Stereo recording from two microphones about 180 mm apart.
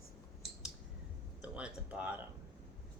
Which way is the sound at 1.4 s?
5° right (ahead or behind).